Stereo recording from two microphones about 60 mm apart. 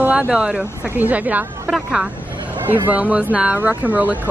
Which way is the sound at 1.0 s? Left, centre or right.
Right.